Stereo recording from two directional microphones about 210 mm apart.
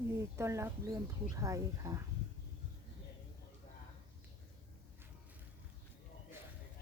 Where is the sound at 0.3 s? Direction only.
15° right (ahead or behind).